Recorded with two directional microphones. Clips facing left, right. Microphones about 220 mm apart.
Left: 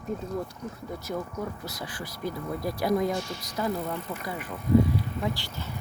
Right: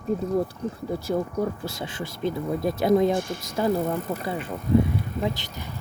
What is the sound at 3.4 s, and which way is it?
Speech, 25° right (ahead or behind).